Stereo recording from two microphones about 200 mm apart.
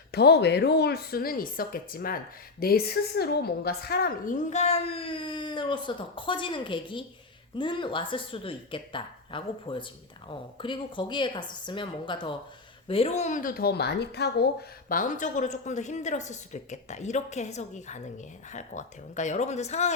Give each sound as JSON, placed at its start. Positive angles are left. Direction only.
{"t": 0.1, "sound": "a woman's voice", "side_deg": 55}
{"t": 14.8, "sound": "speech", "side_deg": 40}